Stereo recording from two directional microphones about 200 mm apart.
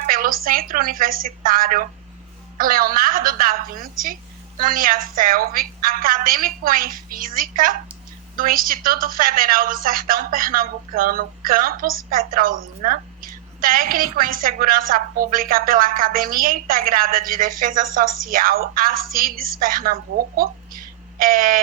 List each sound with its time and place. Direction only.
0.1 s a woman's voice: 45° right (ahead or behind)